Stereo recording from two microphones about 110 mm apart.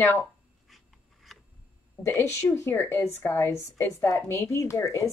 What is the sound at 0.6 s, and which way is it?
Writing, centre (ahead or behind).